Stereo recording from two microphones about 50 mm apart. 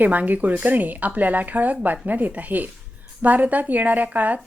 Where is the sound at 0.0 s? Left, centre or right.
Right.